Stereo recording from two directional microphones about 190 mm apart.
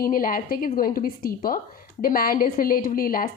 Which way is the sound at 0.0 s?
50° left (ahead or behind).